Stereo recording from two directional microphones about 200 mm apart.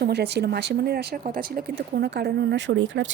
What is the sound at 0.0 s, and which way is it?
Speech, 55° right (ahead or behind).